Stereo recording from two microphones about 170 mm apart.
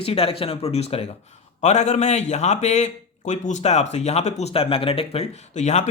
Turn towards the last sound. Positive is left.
turn(degrees=40)  # may be behind; listen again after turning